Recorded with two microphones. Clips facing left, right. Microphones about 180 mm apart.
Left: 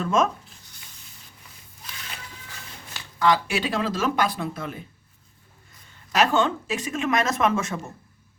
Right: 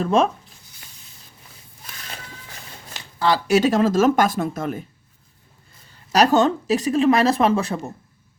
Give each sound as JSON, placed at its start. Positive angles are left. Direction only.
{"t": 0.0, "sound": "speech", "side_deg": -35}
{"t": 3.2, "sound": "speech", "side_deg": -35}
{"t": 5.9, "sound": "speech", "side_deg": -40}